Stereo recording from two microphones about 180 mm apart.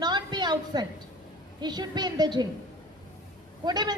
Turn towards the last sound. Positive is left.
turn(degrees=-25)  # may be behind; listen again after turning